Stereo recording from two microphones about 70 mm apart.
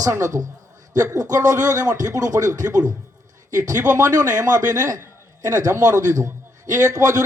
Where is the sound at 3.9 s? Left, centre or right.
Right.